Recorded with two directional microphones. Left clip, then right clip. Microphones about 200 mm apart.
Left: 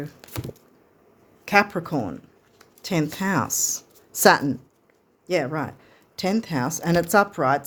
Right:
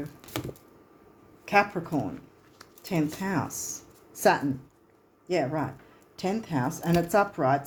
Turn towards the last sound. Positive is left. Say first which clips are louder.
# left 4 dB
turn(degrees=50)  # may be behind; listen again after turning